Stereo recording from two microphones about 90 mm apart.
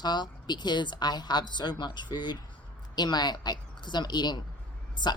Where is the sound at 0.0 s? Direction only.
55° left (ahead or behind).